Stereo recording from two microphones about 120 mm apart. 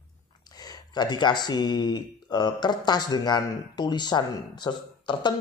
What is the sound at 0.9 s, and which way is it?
Speech, 35° left (ahead or behind).